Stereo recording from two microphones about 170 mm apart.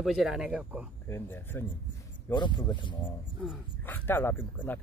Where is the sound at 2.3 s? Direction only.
25° left (ahead or behind).